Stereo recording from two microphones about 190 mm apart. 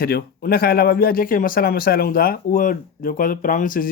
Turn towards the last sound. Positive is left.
turn(degrees=45)  # may be behind; listen again after turning